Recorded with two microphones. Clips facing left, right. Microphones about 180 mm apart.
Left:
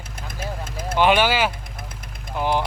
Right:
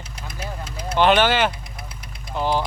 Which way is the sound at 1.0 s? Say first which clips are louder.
Right 1 dB; 10° left (ahead or behind).